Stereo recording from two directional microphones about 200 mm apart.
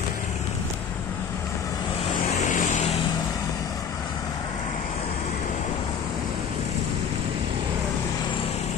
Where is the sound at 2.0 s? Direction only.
30° left (ahead or behind).